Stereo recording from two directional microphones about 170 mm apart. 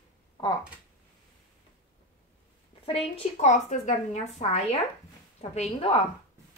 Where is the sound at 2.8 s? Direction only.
35° left (ahead or behind).